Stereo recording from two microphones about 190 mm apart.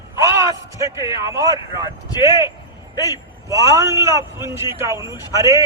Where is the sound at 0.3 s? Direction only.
15° right (ahead or behind).